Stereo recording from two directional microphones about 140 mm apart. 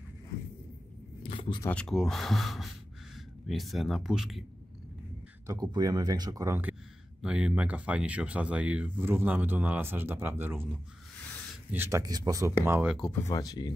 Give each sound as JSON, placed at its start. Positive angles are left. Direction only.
{"t": 1.3, "sound": "a sound", "side_deg": 40}
{"t": 1.6, "sound": "speech", "side_deg": 10}
{"t": 5.5, "sound": "speech", "side_deg": -30}
{"t": 7.2, "sound": "speech", "side_deg": -5}
{"t": 11.7, "sound": "speech", "side_deg": -20}
{"t": 12.8, "sound": "speech", "side_deg": 0}
{"t": 13.3, "sound": "speech", "side_deg": 25}